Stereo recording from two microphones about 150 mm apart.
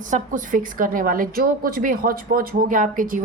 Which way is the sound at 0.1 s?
60° right (ahead or behind).